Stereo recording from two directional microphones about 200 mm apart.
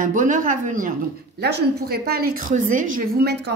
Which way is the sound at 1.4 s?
55° right (ahead or behind).